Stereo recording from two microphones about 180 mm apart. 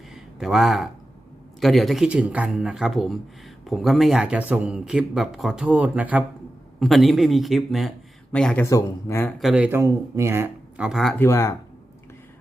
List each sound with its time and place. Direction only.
0.1 s a sound: centre (ahead or behind)
1.6 s speech: centre (ahead or behind)
8.6 s speech: 15° left (ahead or behind)
9.4 s speech: 5° right (ahead or behind)
11.2 s speech: 15° left (ahead or behind)